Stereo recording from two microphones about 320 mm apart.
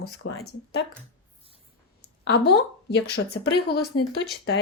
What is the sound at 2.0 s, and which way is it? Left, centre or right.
Speech, left.